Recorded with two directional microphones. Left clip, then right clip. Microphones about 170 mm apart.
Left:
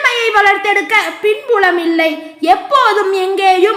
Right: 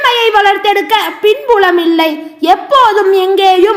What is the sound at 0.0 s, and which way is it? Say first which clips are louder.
A woman's voice: right 3 dB; 25° right (ahead or behind).